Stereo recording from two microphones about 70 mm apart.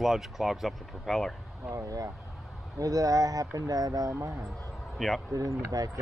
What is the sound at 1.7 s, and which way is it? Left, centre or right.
Speech, right.